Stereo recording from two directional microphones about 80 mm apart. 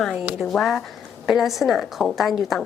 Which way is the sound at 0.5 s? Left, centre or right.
Centre.